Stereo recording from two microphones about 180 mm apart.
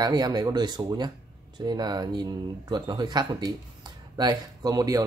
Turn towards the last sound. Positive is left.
turn(degrees=-20)  # may be behind; listen again after turning